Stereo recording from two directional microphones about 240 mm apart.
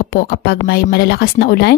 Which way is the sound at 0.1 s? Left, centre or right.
Left.